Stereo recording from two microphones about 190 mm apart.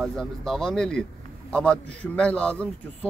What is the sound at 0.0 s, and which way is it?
A man's voice, centre (ahead or behind).